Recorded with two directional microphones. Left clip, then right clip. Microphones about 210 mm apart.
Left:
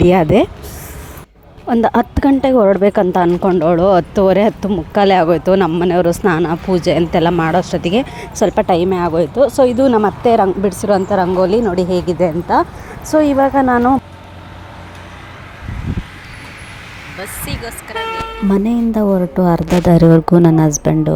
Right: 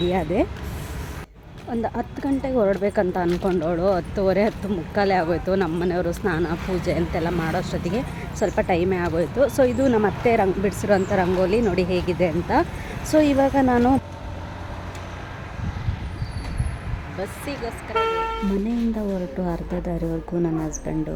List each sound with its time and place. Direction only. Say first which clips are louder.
0.1 s speech: left 11 dB; 50° left (ahead or behind)
1.6 s speech: left 13 dB; 40° left (ahead or behind); by 14.0 s 10° left (ahead or behind)
17.5 s speech: left 4 dB; centre (ahead or behind)
18.5 s speech: left 10 dB; 30° left (ahead or behind)